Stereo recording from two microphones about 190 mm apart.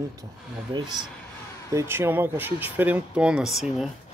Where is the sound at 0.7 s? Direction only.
20° right (ahead or behind); by 3.9 s centre (ahead or behind).